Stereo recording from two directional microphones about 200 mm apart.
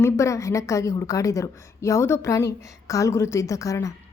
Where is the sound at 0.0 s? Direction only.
15° left (ahead or behind).